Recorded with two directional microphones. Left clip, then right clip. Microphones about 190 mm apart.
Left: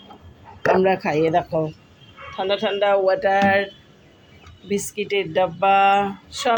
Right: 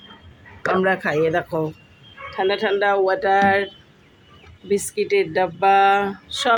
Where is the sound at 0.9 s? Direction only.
20° right (ahead or behind).